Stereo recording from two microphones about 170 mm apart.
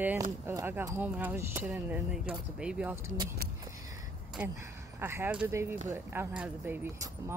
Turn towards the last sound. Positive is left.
turn(degrees=-15)  # may be behind; listen again after turning